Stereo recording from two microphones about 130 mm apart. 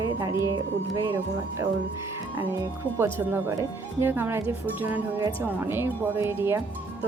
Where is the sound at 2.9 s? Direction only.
15° right (ahead or behind).